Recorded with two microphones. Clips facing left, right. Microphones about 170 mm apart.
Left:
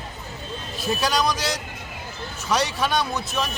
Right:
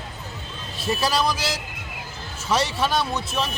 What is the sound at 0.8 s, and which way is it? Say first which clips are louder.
Speech: even; centre (ahead or behind).